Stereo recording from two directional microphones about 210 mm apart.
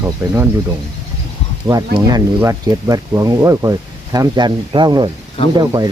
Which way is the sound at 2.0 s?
20° right (ahead or behind).